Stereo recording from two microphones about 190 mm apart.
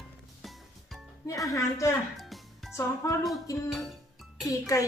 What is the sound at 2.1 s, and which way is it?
Music, centre (ahead or behind).